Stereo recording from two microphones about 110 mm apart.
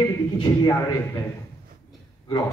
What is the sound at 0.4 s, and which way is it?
Speech, 35° left (ahead or behind).